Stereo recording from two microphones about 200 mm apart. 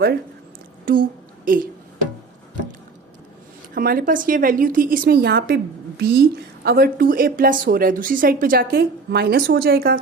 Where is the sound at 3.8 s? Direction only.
45° right (ahead or behind).